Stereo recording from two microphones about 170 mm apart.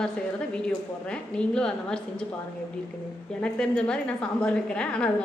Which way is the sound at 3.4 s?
5° left (ahead or behind).